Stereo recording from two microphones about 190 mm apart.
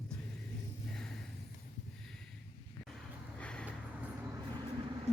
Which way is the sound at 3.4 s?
5° left (ahead or behind).